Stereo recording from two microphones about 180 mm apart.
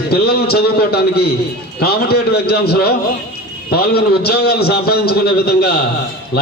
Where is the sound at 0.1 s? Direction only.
60° left (ahead or behind).